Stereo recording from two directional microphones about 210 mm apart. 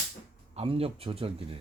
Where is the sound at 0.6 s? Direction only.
25° right (ahead or behind).